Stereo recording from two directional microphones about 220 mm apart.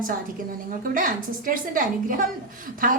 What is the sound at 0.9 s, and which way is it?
A woman's voice, 40° right (ahead or behind).